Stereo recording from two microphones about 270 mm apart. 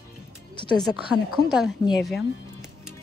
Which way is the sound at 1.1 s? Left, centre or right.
Centre.